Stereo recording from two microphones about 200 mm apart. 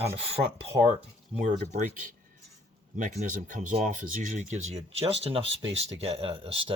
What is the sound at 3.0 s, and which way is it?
Speech, 40° right (ahead or behind).